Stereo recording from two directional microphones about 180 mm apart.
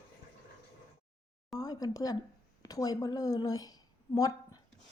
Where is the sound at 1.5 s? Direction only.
20° left (ahead or behind).